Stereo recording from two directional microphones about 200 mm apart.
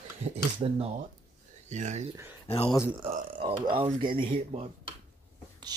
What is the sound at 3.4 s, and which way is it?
Speech, 25° right (ahead or behind).